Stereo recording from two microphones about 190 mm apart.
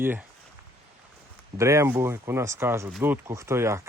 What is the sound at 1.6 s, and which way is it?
Speech, 15° right (ahead or behind).